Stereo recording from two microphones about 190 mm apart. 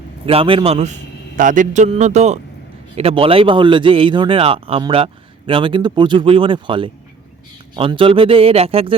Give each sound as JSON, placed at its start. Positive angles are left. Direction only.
{"t": 0.3, "sound": "a man's voice", "side_deg": -30}